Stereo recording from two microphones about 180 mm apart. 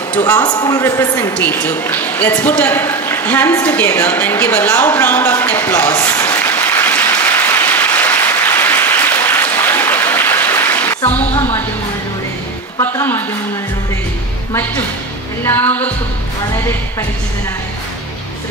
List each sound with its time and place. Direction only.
0.4 s a woman's voice: 20° left (ahead or behind)
1.3 s a sound: 10° left (ahead or behind)
11.1 s music: 10° left (ahead or behind)
12.8 s music: 10° left (ahead or behind)
15.4 s music: 10° left (ahead or behind)